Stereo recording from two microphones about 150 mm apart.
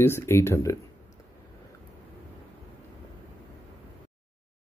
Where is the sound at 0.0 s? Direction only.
15° left (ahead or behind).